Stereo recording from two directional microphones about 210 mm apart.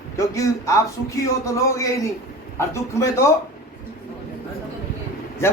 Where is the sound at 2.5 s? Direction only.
15° left (ahead or behind).